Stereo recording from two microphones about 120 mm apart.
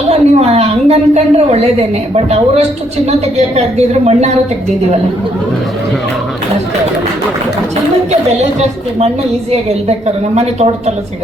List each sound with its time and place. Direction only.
0.1 s a woman's voice: 60° right (ahead or behind)
10.3 s speech: 65° right (ahead or behind)